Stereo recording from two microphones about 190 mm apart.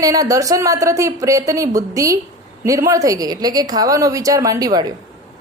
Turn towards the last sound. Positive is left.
turn(degrees=-20)  # may be behind; listen again after turning